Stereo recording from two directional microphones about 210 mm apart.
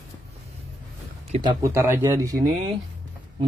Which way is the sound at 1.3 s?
25° right (ahead or behind).